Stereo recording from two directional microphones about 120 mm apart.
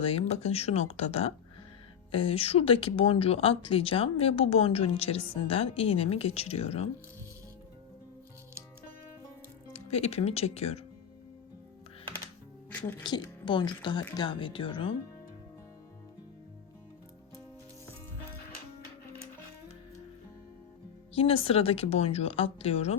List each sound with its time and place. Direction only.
0.0 s speech: 55° left (ahead or behind)
9.7 s speech: 65° left (ahead or behind)
13.0 s speech: 40° left (ahead or behind)
21.2 s speech: 50° left (ahead or behind)